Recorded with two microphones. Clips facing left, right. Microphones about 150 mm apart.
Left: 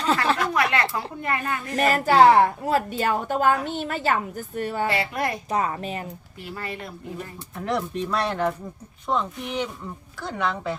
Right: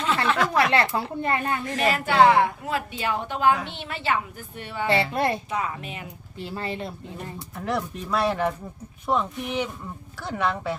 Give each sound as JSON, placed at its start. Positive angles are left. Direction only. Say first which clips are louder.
{"t": 0.5, "sound": "a woman's voice", "louder": "right 2 dB", "side_deg": -30}
{"t": 1.8, "sound": "a woman's voice", "louder": "left 3 dB", "side_deg": 40}
{"t": 4.9, "sound": "speech", "louder": "right 3 dB", "side_deg": -30}
{"t": 5.5, "sound": "a child's voice", "louder": "left 4 dB", "side_deg": 40}
{"t": 6.4, "sound": "speech", "louder": "right 3 dB", "side_deg": -25}
{"t": 7.5, "sound": "speech", "louder": "left 2 dB", "side_deg": 0}